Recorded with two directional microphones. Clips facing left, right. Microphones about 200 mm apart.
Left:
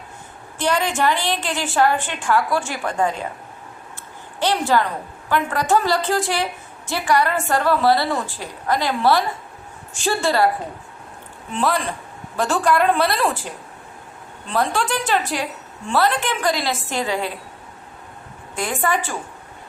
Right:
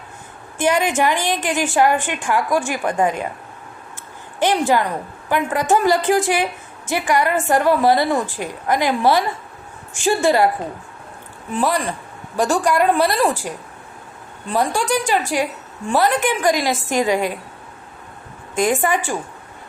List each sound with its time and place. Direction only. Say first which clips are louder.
0.6 s a woman's voice: right 3 dB; 15° right (ahead or behind)
4.4 s a woman's voice: right 2 dB; 15° right (ahead or behind)
11.5 s a woman's voice: right 2 dB; 15° right (ahead or behind)
14.5 s a woman's voice: right 2 dB; 10° right (ahead or behind)
18.5 s a woman's voice: right 4 dB; 20° right (ahead or behind)